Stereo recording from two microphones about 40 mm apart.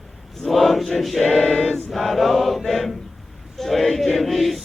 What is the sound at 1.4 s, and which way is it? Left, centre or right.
Choir, centre.